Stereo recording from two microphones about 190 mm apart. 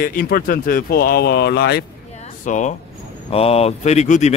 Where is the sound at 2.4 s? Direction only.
40° left (ahead or behind).